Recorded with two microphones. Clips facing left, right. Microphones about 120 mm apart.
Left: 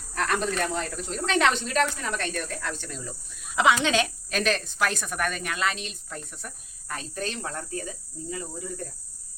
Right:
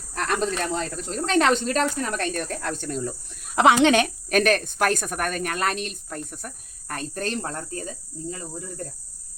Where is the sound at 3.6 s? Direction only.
60° right (ahead or behind); by 7.8 s 40° right (ahead or behind).